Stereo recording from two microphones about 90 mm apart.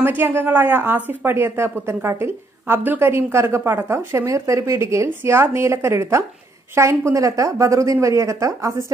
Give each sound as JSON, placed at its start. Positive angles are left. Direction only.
{"t": 0.0, "sound": "a woman's voice", "side_deg": -25}